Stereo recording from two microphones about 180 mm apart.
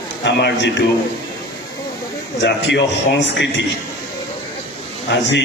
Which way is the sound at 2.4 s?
75° left (ahead or behind).